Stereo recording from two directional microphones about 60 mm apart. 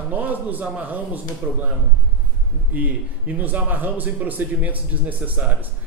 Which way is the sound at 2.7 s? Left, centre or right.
Right.